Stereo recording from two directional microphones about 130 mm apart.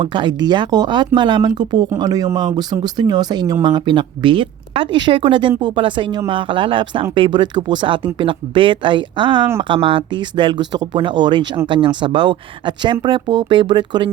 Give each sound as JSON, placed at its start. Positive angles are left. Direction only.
{"t": 0.0, "sound": "speech", "side_deg": -40}